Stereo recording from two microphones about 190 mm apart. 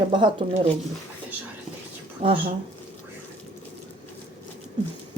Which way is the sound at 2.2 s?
30° right (ahead or behind).